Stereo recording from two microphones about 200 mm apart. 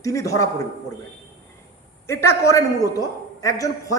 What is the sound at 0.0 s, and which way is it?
Speech, 15° left (ahead or behind).